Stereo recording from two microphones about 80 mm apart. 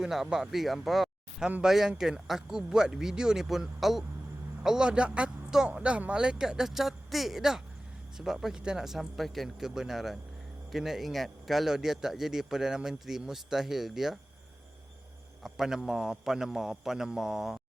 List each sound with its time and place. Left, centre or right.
0.0 s a man's voice: centre
15.4 s a man's voice: centre